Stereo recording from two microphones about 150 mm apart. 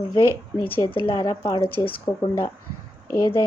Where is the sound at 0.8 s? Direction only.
35° left (ahead or behind).